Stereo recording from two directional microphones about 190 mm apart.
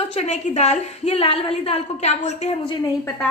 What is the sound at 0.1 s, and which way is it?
A woman's voice, 35° left (ahead or behind).